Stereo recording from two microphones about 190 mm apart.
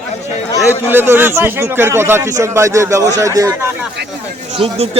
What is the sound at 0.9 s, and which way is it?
A man's voice, 10° right (ahead or behind).